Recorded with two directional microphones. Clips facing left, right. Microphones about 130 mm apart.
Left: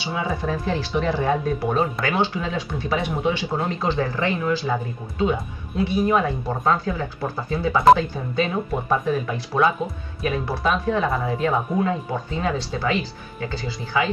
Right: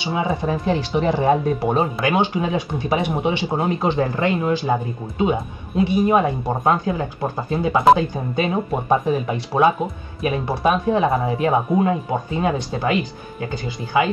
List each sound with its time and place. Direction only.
0.0 s speech: 20° right (ahead or behind)